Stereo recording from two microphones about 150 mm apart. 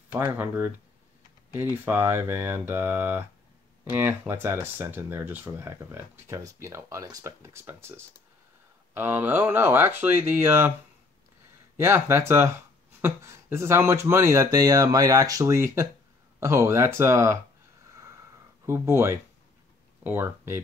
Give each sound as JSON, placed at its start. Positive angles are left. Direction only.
{"t": 0.1, "sound": "speech", "side_deg": -10}
{"t": 11.7, "sound": "speech", "side_deg": -15}
{"t": 18.7, "sound": "speech", "side_deg": -15}